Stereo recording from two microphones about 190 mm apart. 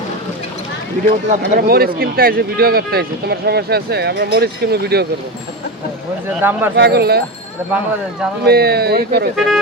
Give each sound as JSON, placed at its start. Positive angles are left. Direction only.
{"t": 1.0, "sound": "speech", "side_deg": -55}
{"t": 6.4, "sound": "speech", "side_deg": -10}
{"t": 6.7, "sound": "speech", "side_deg": -60}
{"t": 8.4, "sound": "speech", "side_deg": -55}